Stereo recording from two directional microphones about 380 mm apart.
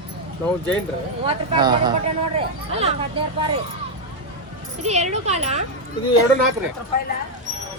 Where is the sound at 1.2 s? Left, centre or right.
Centre.